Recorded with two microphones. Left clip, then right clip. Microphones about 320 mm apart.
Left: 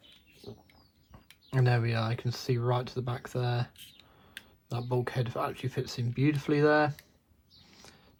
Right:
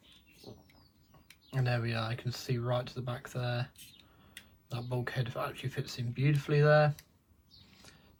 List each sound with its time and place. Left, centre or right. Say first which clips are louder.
1.5 s speech: left 5 dB; left
4.7 s speech: left 5 dB; centre